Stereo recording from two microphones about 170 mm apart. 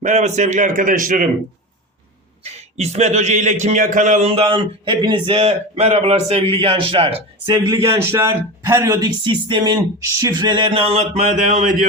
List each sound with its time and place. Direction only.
0.0 s a man's voice: 40° right (ahead or behind)
2.4 s a man's voice: 40° right (ahead or behind)